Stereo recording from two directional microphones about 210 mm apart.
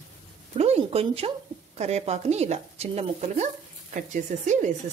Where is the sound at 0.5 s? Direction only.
30° right (ahead or behind).